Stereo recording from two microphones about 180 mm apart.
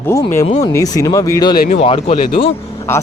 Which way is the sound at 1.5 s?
55° left (ahead or behind).